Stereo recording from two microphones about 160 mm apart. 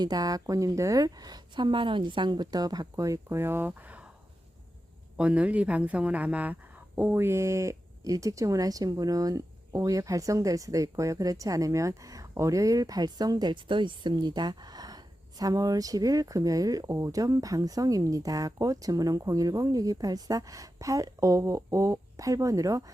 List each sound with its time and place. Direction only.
0.0 s speech: 25° right (ahead or behind); by 4.1 s 10° right (ahead or behind)
5.1 s speech: 5° right (ahead or behind)